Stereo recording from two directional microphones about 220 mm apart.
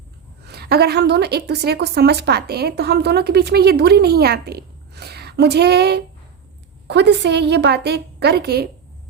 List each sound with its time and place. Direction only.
0.4 s a woman's voice: 45° right (ahead or behind)